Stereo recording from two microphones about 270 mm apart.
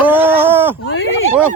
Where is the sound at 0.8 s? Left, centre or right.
Left.